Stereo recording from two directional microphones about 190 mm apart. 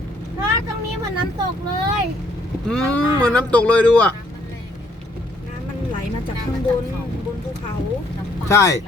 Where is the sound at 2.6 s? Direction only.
5° left (ahead or behind).